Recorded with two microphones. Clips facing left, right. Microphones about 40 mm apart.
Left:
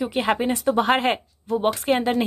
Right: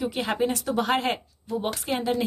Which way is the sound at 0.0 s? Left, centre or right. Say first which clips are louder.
Left 4 dB; left.